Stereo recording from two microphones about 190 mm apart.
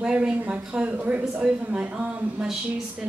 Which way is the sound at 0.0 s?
5° right (ahead or behind).